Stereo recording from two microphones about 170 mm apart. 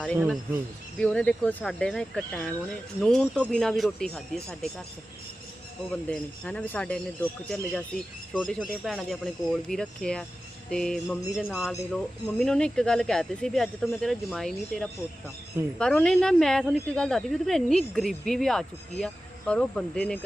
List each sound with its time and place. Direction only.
0.9 s a woman's voice: 5° left (ahead or behind)
5.9 s a man's voice: 5° left (ahead or behind)
11.2 s speech: 20° left (ahead or behind)
11.4 s a woman's voice: 5° right (ahead or behind)